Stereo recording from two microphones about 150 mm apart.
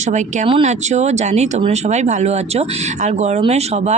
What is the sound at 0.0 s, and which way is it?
Speech, 55° right (ahead or behind).